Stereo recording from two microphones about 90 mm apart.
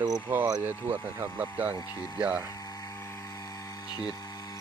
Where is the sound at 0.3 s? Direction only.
20° right (ahead or behind).